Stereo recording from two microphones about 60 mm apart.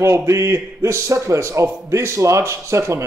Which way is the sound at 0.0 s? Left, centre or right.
Right.